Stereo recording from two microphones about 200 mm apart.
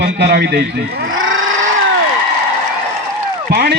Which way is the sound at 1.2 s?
85° right.